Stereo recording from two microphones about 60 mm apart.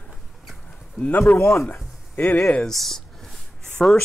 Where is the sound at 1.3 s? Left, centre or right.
Left.